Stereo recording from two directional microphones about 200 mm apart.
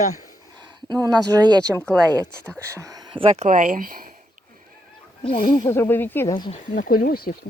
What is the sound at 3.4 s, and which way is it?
Speech, 40° right (ahead or behind).